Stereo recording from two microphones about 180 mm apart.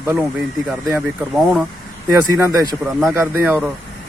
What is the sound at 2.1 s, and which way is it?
Speech, 10° right (ahead or behind).